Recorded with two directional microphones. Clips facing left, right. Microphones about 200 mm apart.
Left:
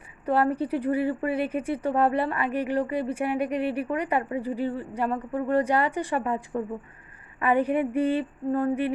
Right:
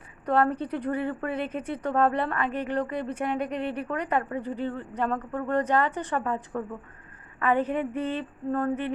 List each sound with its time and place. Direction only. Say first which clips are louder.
0.3 s a woman's voice: left 1 dB; 5° left (ahead or behind)